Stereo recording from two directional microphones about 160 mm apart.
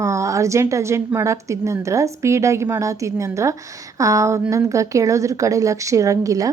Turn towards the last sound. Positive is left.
turn(degrees=-20)  # may be behind; listen again after turning